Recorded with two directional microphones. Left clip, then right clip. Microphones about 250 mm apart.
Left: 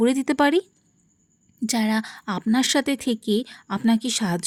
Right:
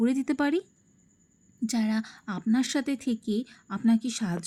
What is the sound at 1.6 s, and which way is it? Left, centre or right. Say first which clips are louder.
Speech: left 6 dB; left.